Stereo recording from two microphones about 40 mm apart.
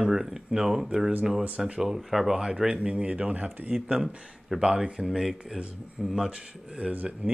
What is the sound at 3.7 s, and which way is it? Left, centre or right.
Speech, centre.